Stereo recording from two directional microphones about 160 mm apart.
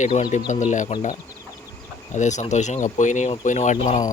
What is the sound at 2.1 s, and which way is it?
Speech, 50° left (ahead or behind).